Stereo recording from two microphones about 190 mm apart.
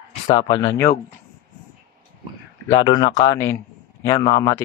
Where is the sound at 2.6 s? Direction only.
25° left (ahead or behind).